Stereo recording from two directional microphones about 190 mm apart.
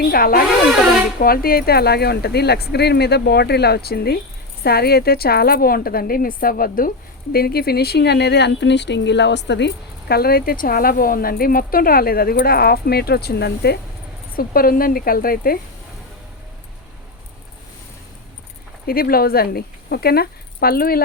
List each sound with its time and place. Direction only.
0.0 s speech: 50° left (ahead or behind)
18.9 s speech: 50° left (ahead or behind)